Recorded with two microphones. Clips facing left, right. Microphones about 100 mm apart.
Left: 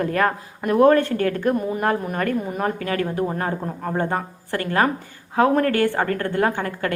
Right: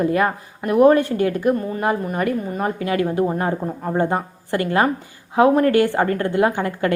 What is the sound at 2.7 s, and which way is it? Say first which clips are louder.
A woman's voice: right 4 dB; 20° right (ahead or behind).